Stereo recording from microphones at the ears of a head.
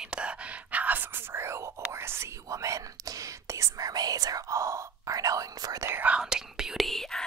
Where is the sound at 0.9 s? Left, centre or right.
Right.